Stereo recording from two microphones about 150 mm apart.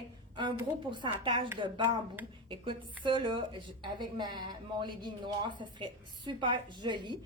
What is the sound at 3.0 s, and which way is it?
A woman's voice, 30° right (ahead or behind).